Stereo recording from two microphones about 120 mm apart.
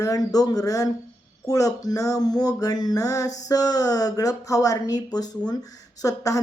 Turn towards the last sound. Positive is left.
turn(degrees=30)  # may be behind; listen again after turning